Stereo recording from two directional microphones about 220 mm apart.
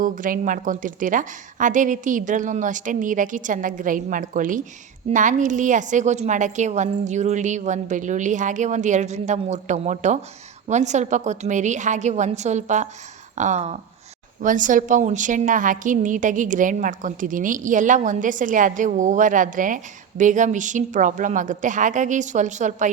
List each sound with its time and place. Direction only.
0.0 s a woman's voice: 35° right (ahead or behind)